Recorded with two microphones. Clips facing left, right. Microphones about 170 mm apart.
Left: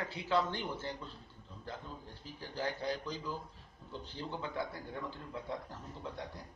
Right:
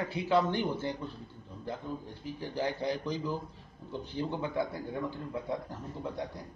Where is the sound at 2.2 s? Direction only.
15° right (ahead or behind).